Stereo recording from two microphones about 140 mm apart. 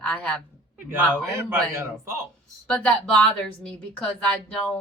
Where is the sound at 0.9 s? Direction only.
15° right (ahead or behind).